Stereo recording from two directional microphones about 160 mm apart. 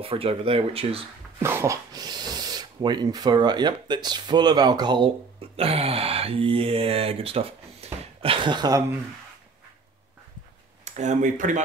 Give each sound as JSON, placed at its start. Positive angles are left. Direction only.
{"t": 0.0, "sound": "speech", "side_deg": -35}
{"t": 1.4, "sound": "speech", "side_deg": -15}
{"t": 10.9, "sound": "speech", "side_deg": -50}